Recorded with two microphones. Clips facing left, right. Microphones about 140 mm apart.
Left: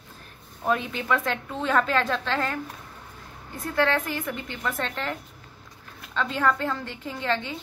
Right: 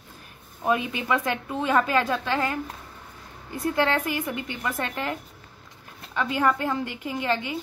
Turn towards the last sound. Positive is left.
turn(degrees=-10)  # may be behind; listen again after turning